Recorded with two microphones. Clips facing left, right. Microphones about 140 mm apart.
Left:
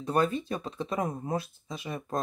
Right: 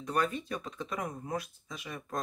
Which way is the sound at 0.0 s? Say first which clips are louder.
Left 5 dB; 30° left (ahead or behind).